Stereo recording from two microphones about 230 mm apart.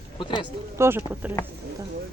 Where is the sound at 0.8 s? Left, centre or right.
Centre.